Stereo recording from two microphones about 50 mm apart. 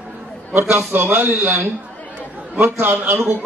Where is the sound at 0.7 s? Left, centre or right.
Right.